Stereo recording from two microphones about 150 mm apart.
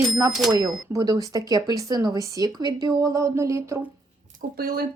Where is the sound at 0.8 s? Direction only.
20° right (ahead or behind).